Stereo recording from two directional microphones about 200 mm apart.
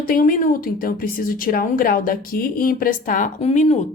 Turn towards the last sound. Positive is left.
turn(degrees=35)  # may be behind; listen again after turning